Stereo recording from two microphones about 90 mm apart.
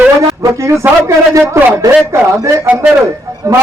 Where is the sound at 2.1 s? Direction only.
35° right (ahead or behind).